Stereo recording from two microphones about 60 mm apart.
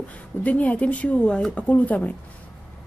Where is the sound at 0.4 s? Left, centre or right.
Left.